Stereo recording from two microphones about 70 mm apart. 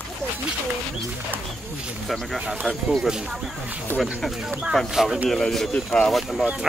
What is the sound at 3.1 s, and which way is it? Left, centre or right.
Speech, centre.